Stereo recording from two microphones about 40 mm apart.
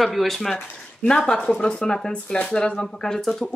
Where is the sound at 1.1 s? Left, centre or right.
Centre.